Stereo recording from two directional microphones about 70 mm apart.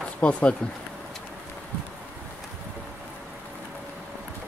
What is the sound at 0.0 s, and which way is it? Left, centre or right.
Speech, centre.